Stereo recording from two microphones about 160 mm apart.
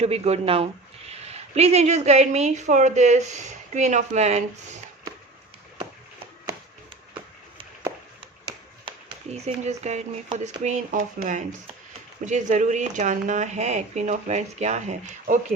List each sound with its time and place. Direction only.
0.0 s speech: 40° right (ahead or behind)
9.3 s speech: 45° right (ahead or behind)